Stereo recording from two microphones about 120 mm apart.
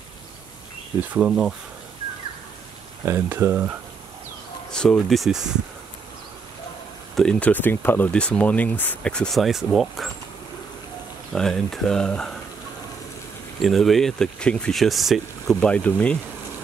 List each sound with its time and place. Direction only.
1.1 s speech: 10° right (ahead or behind)
3.1 s speech: 20° right (ahead or behind)
4.6 s speech: 5° left (ahead or behind)
7.2 s speech: 10° left (ahead or behind)
11.3 s speech: 5° left (ahead or behind)
13.6 s speech: centre (ahead or behind)